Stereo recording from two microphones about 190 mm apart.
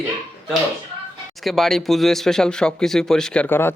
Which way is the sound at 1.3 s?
Centre (ahead or behind).